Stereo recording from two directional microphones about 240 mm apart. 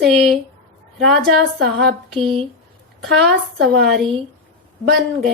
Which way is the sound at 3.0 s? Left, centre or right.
Right.